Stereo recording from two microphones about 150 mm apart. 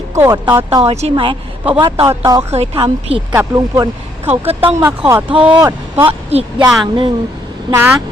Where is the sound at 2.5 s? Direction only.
40° right (ahead or behind).